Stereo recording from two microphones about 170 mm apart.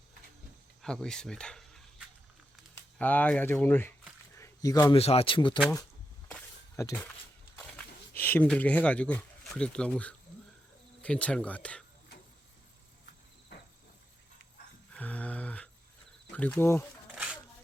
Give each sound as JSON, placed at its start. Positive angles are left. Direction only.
{"t": 0.8, "sound": "speech", "side_deg": 5}
{"t": 3.0, "sound": "speech", "side_deg": 10}
{"t": 4.4, "sound": "a sound", "side_deg": 20}
{"t": 4.9, "sound": "speech", "side_deg": 35}
{"t": 6.8, "sound": "speech", "side_deg": 15}
{"t": 7.5, "sound": "dog", "side_deg": 10}
{"t": 8.2, "sound": "speech", "side_deg": 10}
{"t": 14.9, "sound": "a sound", "side_deg": 10}
{"t": 16.3, "sound": "speech", "side_deg": 10}